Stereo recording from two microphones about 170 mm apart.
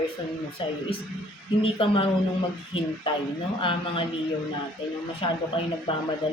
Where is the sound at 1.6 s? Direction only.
30° left (ahead or behind).